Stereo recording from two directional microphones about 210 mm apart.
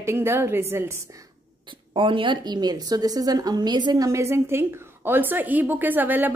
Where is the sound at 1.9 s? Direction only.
25° right (ahead or behind).